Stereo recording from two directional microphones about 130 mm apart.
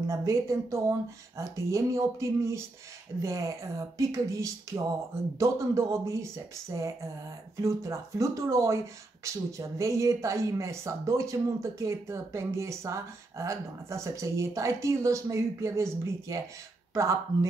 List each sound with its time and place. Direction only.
0.1 s speech: 25° right (ahead or behind)